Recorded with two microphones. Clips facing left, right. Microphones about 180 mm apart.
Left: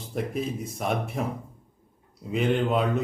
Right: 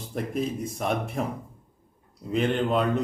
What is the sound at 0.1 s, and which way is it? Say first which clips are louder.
A man's voice: right 1 dB; centre (ahead or behind).